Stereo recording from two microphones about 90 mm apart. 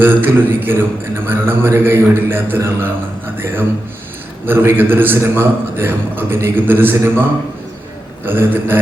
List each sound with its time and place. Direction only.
0.0 s speech: 25° right (ahead or behind)
4.4 s speech: 25° right (ahead or behind)
8.2 s speech: 25° right (ahead or behind)